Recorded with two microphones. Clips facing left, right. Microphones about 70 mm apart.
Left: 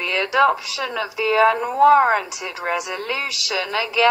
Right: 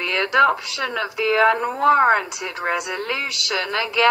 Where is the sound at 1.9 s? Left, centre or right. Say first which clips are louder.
Even; right.